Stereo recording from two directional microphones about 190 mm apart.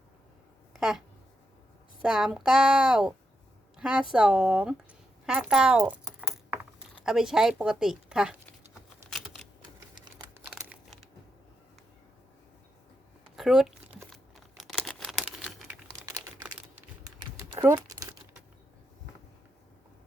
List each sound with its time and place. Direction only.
0.7 s a sound: centre (ahead or behind)
2.0 s a woman's voice: 5° right (ahead or behind)
9.0 s computer keyboard: centre (ahead or behind)
10.5 s crumpling: centre (ahead or behind)
13.3 s speech: centre (ahead or behind)
14.6 s crumpling: 5° left (ahead or behind)
16.0 s typing: 20° right (ahead or behind)
17.6 s crumpling: 15° right (ahead or behind)